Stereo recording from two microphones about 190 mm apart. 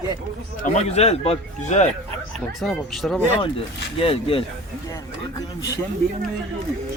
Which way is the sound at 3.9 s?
30° left (ahead or behind).